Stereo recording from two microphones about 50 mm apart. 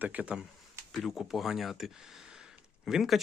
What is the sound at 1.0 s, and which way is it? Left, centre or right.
Speech, centre.